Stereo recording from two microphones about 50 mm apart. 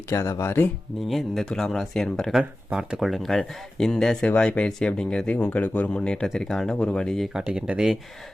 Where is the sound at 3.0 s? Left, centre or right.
Centre.